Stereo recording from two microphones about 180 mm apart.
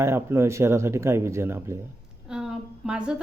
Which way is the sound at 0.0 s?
15° right (ahead or behind).